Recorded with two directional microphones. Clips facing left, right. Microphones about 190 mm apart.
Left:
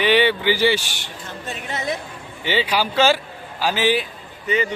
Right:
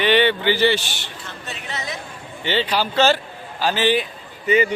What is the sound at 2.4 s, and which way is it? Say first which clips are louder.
A man's voice: even; 10° left (ahead or behind).